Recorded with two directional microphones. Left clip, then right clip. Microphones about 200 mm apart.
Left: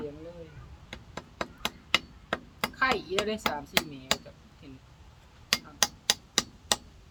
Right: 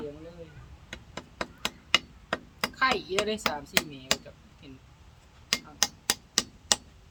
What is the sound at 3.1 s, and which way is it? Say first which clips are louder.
Speech: right 1 dB; 20° right (ahead or behind).